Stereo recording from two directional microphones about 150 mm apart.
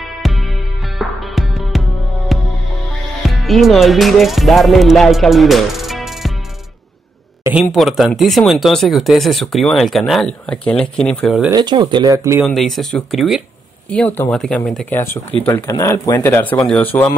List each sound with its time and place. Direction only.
0.0 s music: centre (ahead or behind)
3.2 s speech: centre (ahead or behind)
7.6 s speech: centre (ahead or behind)
11.5 s speech: 30° right (ahead or behind)
12.4 s speech: centre (ahead or behind)